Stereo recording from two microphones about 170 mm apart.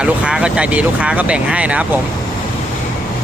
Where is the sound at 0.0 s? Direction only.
5° right (ahead or behind).